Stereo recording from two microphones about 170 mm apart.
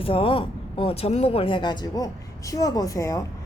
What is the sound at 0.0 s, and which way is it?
A woman's voice, 30° left (ahead or behind).